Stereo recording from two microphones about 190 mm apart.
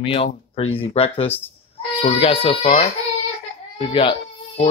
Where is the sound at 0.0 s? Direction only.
30° left (ahead or behind).